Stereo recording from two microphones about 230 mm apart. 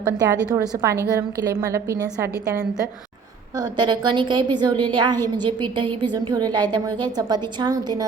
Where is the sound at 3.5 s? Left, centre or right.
Centre.